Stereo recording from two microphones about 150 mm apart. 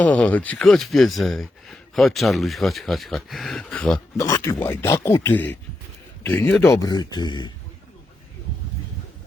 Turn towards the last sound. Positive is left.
turn(degrees=30)  # may be behind; listen again after turning